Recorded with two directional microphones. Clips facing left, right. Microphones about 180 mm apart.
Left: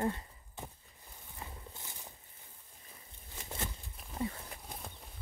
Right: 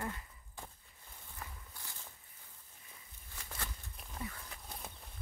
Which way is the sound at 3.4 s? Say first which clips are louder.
Left 5 dB; 25° left (ahead or behind).